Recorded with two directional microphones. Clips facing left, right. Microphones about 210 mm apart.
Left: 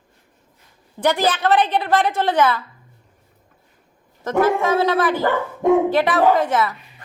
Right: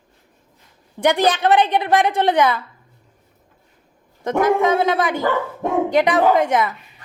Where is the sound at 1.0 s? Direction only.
15° right (ahead or behind).